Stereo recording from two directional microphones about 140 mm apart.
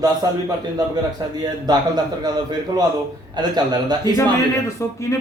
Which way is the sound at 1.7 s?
30° right (ahead or behind).